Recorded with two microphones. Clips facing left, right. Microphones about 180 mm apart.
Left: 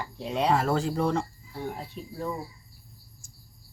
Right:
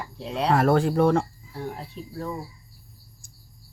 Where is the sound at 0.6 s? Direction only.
55° right (ahead or behind).